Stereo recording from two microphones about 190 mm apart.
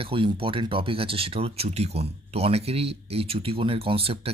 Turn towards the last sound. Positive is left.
turn(degrees=-30)  # may be behind; listen again after turning